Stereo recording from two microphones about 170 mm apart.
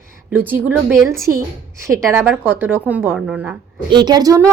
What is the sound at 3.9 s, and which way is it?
Speech, 25° right (ahead or behind).